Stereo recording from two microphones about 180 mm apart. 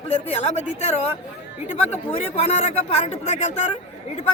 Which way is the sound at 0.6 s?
40° left (ahead or behind).